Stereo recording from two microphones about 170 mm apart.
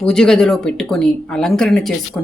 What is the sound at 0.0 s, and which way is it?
Speech, 5° left (ahead or behind).